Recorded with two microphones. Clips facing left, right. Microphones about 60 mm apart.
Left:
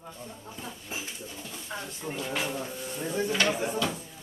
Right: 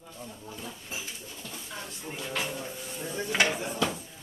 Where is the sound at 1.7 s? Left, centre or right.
Left.